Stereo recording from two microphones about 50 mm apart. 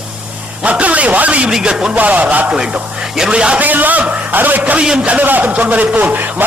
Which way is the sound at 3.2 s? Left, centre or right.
Centre.